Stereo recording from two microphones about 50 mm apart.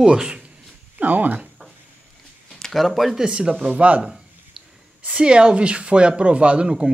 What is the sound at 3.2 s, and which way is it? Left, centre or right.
Speech, centre.